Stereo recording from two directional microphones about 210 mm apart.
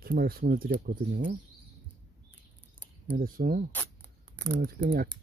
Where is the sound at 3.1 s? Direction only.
40° right (ahead or behind).